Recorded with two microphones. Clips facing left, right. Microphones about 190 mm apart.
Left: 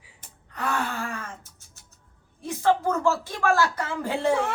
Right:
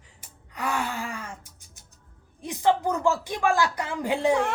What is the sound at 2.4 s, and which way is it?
Speech, 15° right (ahead or behind).